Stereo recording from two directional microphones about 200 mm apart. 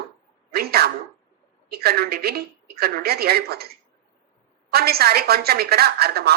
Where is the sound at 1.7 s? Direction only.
50° right (ahead or behind).